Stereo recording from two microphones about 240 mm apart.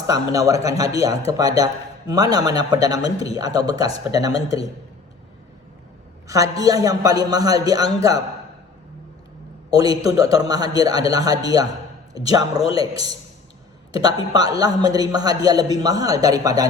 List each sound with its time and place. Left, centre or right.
0.1 s a man's voice: centre
6.2 s a man's voice: centre
9.6 s a man's voice: centre